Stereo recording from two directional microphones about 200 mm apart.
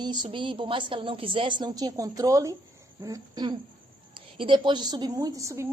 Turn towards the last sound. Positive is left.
turn(degrees=-15)  # may be behind; listen again after turning